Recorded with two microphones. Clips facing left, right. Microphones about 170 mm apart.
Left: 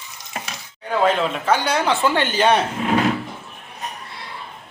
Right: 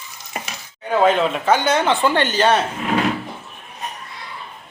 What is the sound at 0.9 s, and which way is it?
Speech, centre (ahead or behind).